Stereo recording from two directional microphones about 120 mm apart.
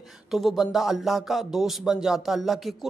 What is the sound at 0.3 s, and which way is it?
A man's voice, centre (ahead or behind).